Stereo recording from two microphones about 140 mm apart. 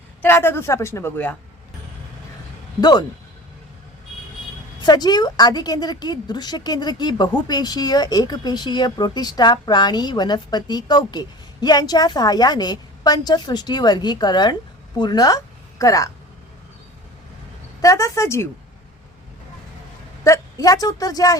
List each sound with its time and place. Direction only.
0.2 s a woman's voice: 15° left (ahead or behind)
4.8 s a woman's voice: 30° left (ahead or behind)
17.7 s a woman's voice: 25° left (ahead or behind)
20.2 s a woman's voice: 20° left (ahead or behind)